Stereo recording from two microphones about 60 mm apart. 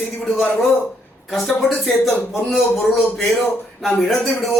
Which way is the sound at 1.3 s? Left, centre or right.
Centre.